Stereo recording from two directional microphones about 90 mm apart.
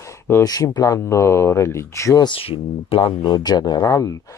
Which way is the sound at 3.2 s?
50° left (ahead or behind).